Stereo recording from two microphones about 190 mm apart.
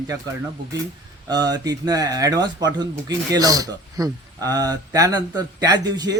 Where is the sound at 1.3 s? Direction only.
20° right (ahead or behind).